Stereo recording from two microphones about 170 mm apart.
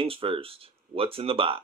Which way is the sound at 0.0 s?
30° right (ahead or behind).